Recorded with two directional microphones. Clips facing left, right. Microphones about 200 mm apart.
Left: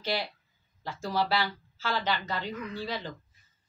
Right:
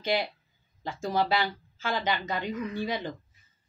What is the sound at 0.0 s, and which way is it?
A woman's voice, 15° right (ahead or behind).